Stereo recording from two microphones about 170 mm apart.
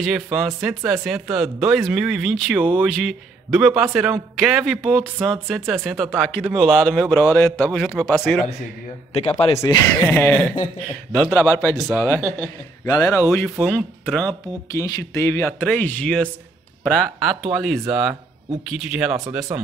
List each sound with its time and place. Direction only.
0.0 s a man's voice: centre (ahead or behind)
9.1 s a man's voice: 40° left (ahead or behind)
9.6 s speech: 15° left (ahead or behind)
11.2 s a man's voice: centre (ahead or behind)
12.8 s a man's voice: 20° left (ahead or behind); by 19.1 s 5° right (ahead or behind)
19.5 s speech: 15° right (ahead or behind)